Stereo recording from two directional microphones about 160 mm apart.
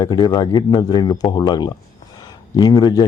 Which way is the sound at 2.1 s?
25° left (ahead or behind).